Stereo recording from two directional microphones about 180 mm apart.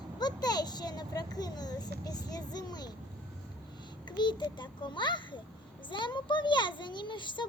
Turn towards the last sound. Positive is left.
turn(degrees=25)  # may be behind; listen again after turning